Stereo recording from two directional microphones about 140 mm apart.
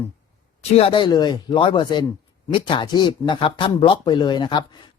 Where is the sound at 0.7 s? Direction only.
40° left (ahead or behind).